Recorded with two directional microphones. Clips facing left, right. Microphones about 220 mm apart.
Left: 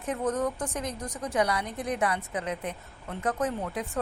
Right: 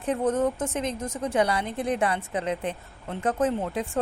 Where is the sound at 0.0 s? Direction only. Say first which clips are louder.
Right 4 dB; 30° right (ahead or behind).